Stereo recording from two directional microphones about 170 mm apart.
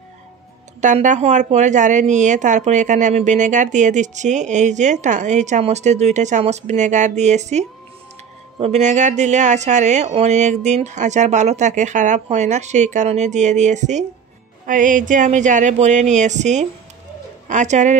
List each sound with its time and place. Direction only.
0.7 s a woman's voice: 45° right (ahead or behind)